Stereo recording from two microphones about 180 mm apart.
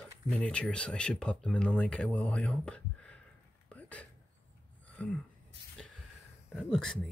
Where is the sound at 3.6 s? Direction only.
10° left (ahead or behind).